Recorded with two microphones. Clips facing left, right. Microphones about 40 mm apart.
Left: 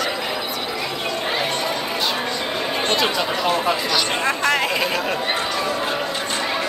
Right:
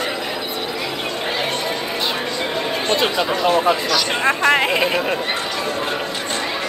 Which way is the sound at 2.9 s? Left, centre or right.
Right.